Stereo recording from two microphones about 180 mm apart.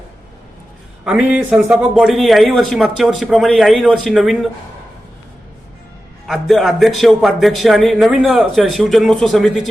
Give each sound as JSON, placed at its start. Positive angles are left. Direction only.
{"t": 1.0, "sound": "a man's voice", "side_deg": -5}
{"t": 6.2, "sound": "a man's voice", "side_deg": 0}